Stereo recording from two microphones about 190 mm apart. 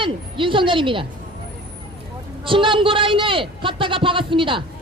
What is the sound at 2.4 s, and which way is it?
A woman's voice, 25° right (ahead or behind).